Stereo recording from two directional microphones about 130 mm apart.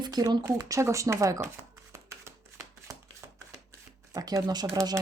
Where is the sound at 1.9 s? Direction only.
20° right (ahead or behind).